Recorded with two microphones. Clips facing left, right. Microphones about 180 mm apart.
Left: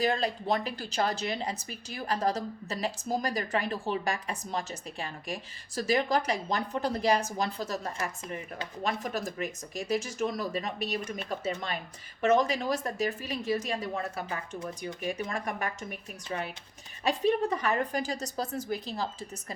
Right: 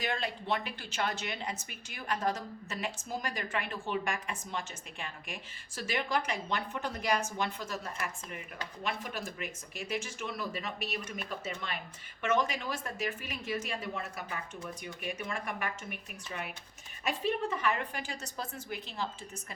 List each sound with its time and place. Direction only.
0.0 s a woman's voice: 35° left (ahead or behind)